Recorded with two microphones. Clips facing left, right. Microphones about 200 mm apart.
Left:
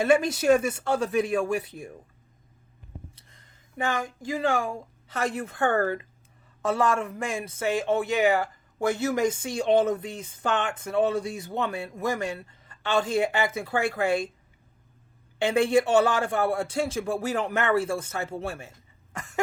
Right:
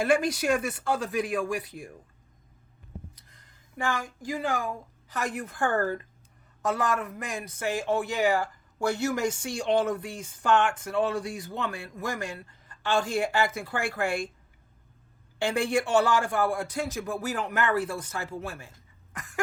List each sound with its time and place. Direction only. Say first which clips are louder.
0.0 s a man's voice: left 3 dB; 25° left (ahead or behind)
3.2 s a sound: left 1 dB; 25° left (ahead or behind)
5.2 s a man's voice: left 4 dB; 25° left (ahead or behind)
5.5 s speech: left 2 dB; 60° left (ahead or behind)
6.6 s a man's voice: left 3 dB; 25° left (ahead or behind)
15.4 s a man's voice: left 5 dB; 20° left (ahead or behind)
19.1 s a sound: left 4 dB; 25° left (ahead or behind)